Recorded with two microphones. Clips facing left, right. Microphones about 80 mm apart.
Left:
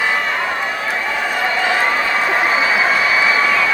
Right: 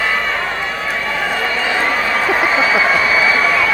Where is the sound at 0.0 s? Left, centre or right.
Centre.